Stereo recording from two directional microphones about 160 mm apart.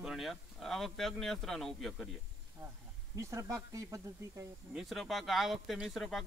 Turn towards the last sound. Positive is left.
turn(degrees=0)  # may be behind; listen again after turning